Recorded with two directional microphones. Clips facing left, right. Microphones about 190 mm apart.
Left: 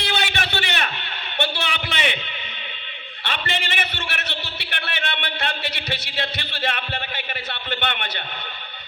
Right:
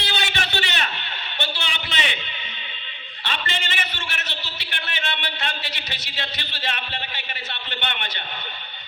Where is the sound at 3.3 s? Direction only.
60° left (ahead or behind).